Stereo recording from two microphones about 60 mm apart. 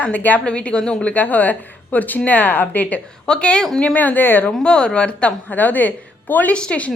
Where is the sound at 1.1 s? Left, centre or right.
Left.